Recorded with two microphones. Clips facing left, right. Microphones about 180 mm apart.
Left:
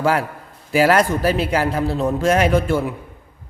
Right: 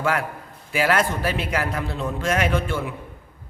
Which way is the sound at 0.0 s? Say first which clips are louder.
Left 5 dB; 35° left (ahead or behind).